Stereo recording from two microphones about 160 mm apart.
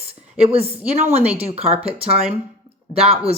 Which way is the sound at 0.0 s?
40° right (ahead or behind).